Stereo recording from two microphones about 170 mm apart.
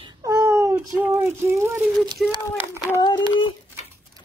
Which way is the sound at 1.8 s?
Centre (ahead or behind).